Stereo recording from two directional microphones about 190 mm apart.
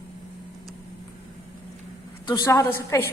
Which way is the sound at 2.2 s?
20° left (ahead or behind).